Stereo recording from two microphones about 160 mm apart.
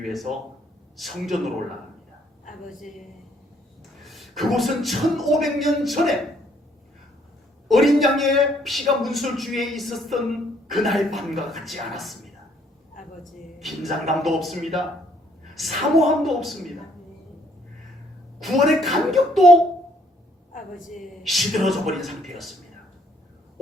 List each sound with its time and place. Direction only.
0.1 s a man's voice: centre (ahead or behind)
2.6 s a man's voice: centre (ahead or behind)
4.0 s a man's voice: centre (ahead or behind)
7.7 s a man's voice: centre (ahead or behind)
14.0 s a man's voice: centre (ahead or behind)
18.3 s a man's voice: centre (ahead or behind)
20.5 s a woman's voice: 55° left (ahead or behind)
20.9 s a man's voice: centre (ahead or behind)